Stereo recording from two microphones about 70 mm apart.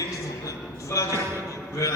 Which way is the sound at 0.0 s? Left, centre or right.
Left.